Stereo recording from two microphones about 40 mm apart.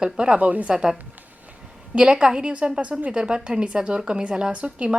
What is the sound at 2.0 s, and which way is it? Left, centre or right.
Speech, right.